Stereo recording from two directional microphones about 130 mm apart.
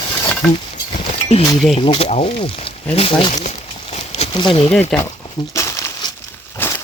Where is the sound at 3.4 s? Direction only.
50° left (ahead or behind).